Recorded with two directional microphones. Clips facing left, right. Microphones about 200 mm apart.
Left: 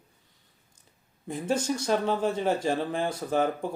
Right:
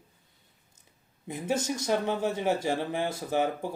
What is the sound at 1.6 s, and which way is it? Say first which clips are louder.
Speech: left 1 dB; 20° right (ahead or behind).